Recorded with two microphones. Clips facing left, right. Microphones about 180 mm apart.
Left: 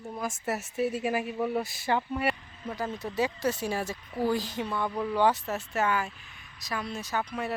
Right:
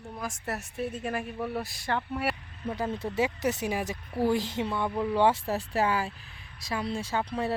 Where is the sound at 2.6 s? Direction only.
30° right (ahead or behind).